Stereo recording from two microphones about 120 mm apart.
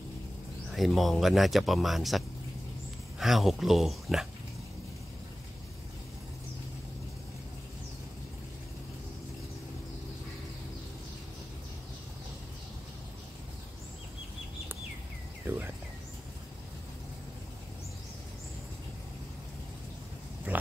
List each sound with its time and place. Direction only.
0.7 s speech: centre (ahead or behind)
15.4 s cricket: 15° right (ahead or behind)
20.5 s pig: 15° right (ahead or behind)